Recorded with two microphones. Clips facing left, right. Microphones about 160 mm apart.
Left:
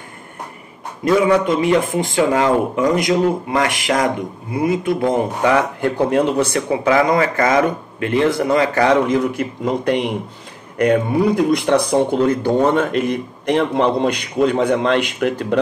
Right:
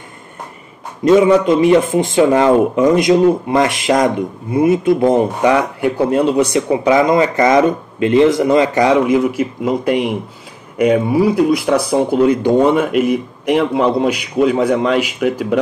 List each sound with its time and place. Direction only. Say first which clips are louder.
1.0 s speech: right 5 dB; 25° right (ahead or behind); by 15.6 s 5° right (ahead or behind)